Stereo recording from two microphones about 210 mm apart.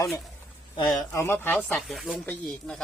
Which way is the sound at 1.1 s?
10° left (ahead or behind).